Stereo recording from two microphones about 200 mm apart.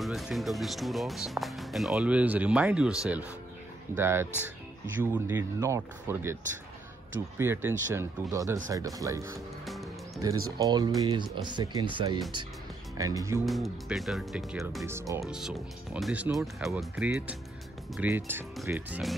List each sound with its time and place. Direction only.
0.0 s speech: centre (ahead or behind)
9.7 s music: centre (ahead or behind)
10.2 s speech: 20° right (ahead or behind)
13.5 s speech: centre (ahead or behind)
14.9 s speech: 15° right (ahead or behind)
15.2 s speech: 5° right (ahead or behind)